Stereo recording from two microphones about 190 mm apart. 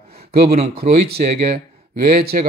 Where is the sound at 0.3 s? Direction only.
55° right (ahead or behind).